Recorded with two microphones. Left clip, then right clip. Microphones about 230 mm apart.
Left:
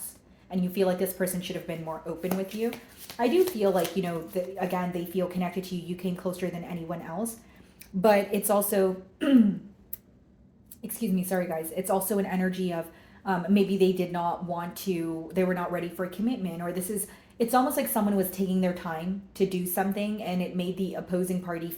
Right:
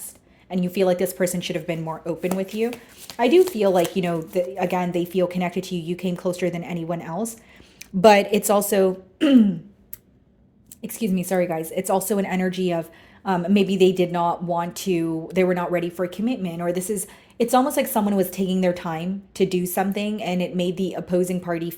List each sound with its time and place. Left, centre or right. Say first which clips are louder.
0.5 s a woman's voice: right 6 dB; right
10.8 s a woman's voice: right 6 dB; right